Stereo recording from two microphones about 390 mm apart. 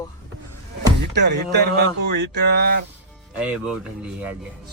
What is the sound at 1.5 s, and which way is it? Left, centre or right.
Speech, right.